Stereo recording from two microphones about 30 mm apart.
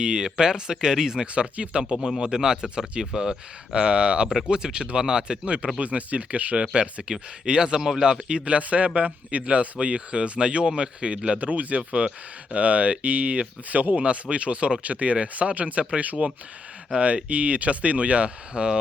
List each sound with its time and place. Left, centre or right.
0.0 s speech: right
1.3 s speech: right
1.8 s speech: right
2.6 s speech: right
3.0 s speech: right
5.8 s speech: right
6.6 s speech: right
7.8 s a man's voice: centre
8.3 s speech: right
11.3 s speech: right
15.6 s speech: right